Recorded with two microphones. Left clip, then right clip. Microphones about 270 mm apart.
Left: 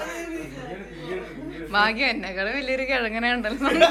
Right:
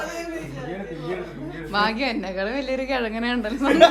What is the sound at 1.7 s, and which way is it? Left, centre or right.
A woman's voice, centre.